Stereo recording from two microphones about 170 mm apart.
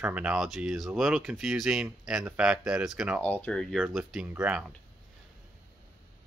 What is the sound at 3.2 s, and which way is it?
Speech, 5° left (ahead or behind).